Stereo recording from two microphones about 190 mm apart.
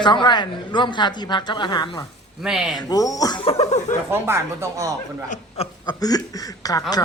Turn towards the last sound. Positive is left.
turn(degrees=20)  # may be behind; listen again after turning